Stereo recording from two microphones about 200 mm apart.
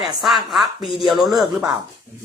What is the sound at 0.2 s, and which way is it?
Speech, centre (ahead or behind).